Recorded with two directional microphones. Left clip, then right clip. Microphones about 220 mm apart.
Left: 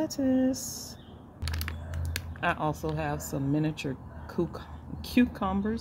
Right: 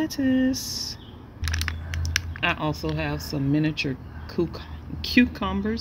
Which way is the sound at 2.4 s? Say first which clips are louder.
Right 1 dB; centre (ahead or behind).